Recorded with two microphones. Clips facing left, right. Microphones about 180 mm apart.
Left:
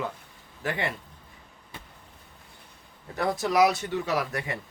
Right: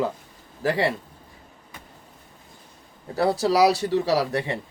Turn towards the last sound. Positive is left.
turn(degrees=-30)  # may be behind; listen again after turning